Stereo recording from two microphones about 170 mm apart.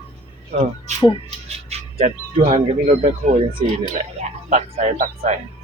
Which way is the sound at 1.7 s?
40° right (ahead or behind).